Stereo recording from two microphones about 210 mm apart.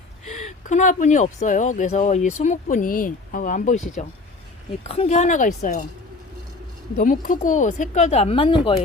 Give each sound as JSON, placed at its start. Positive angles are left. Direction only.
{"t": 0.3, "sound": "speech", "side_deg": 35}
{"t": 6.9, "sound": "speech", "side_deg": 40}